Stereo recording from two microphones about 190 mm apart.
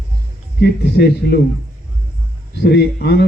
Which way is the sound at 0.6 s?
60° left (ahead or behind).